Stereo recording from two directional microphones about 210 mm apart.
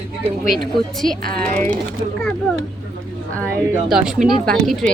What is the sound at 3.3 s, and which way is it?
A woman's voice, 5° left (ahead or behind).